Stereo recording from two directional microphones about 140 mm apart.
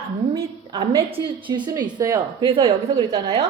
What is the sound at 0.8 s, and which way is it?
A woman's voice, 40° right (ahead or behind).